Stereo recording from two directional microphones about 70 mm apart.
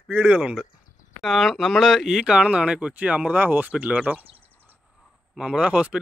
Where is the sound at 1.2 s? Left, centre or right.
Centre; by 4.2 s right.